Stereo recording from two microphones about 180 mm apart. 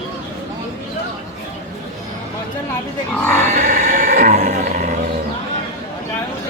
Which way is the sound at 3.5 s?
45° right (ahead or behind).